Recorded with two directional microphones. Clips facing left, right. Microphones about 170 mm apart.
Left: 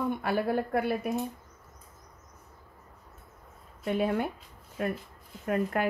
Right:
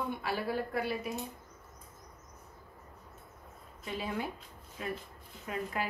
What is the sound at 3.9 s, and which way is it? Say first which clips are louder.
A woman's voice: left 9 dB; 55° left (ahead or behind).